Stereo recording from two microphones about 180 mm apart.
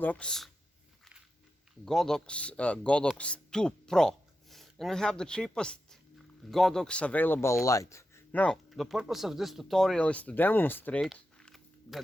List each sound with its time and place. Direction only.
0.0 s speech: 5° left (ahead or behind)
1.8 s speech: centre (ahead or behind)